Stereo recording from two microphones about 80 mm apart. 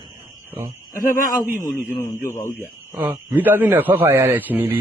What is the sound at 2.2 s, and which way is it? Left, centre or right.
Speech, left.